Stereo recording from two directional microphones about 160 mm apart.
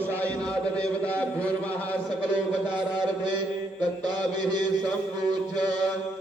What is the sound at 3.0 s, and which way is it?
Mantra, 30° right (ahead or behind).